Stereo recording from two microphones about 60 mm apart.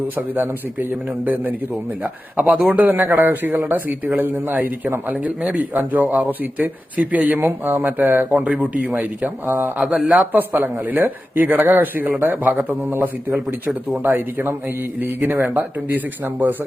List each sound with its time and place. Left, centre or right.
0.2 s a man's voice: right
9.8 s speech: centre
10.3 s speech: right